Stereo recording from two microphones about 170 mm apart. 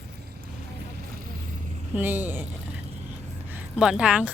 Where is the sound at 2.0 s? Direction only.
10° right (ahead or behind).